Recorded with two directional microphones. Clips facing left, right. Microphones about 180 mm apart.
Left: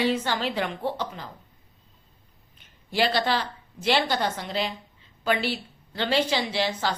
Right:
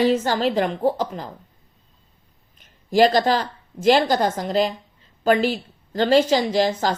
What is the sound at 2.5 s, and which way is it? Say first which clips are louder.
A woman's voice: right 9 dB; 45° right (ahead or behind).